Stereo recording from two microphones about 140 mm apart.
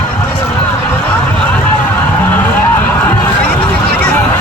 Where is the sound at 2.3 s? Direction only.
15° left (ahead or behind).